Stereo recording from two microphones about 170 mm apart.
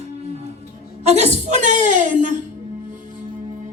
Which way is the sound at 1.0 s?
40° right (ahead or behind).